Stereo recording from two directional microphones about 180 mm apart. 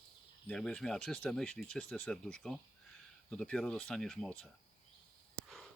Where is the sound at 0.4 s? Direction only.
5° left (ahead or behind).